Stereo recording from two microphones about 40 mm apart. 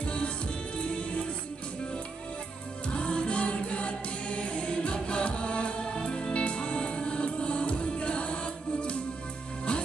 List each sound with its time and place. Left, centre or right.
0.0 s music: left
2.9 s music: left